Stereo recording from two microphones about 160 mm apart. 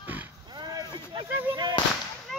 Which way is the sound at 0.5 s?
25° right (ahead or behind).